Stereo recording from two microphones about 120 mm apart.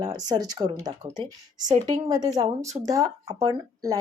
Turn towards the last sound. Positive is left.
turn(degrees=-30)  # may be behind; listen again after turning